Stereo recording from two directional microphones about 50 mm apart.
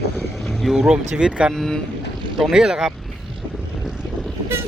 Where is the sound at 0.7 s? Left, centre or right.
Centre.